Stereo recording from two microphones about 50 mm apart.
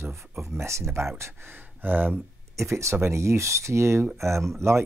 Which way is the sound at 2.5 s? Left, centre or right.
Right.